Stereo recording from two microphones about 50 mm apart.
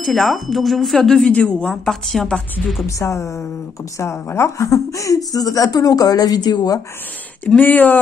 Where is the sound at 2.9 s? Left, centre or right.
Left.